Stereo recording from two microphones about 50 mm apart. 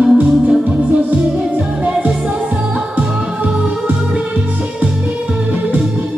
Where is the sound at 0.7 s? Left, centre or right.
Right.